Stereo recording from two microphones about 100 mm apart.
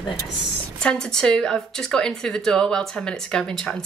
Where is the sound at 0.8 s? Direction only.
5° left (ahead or behind).